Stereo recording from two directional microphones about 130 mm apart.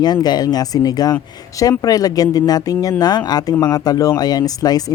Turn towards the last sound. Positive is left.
turn(degrees=30)  # may be behind; listen again after turning